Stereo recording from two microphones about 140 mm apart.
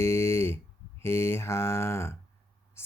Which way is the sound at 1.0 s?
20° left (ahead or behind).